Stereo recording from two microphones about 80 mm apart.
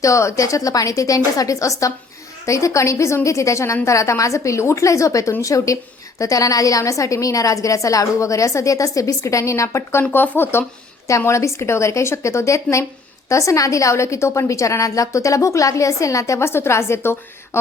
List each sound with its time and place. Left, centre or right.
0.0 s a woman's voice: left
10.0 s speech: left
11.3 s a woman's voice: left